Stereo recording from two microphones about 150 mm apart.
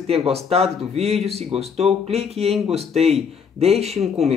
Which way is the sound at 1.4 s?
45° right (ahead or behind).